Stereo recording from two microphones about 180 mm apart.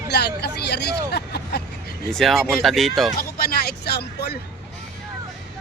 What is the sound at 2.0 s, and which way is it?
Speech, centre (ahead or behind).